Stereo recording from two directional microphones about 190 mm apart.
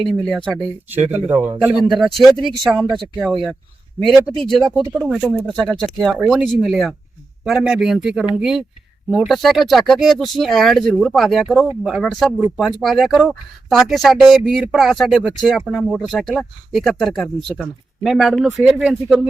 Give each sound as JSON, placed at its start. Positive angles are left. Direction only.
{"t": 0.1, "sound": "speech", "side_deg": 0}
{"t": 0.9, "sound": "speech", "side_deg": -10}